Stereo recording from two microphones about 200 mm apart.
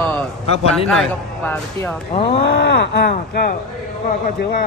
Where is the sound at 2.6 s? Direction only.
60° left (ahead or behind).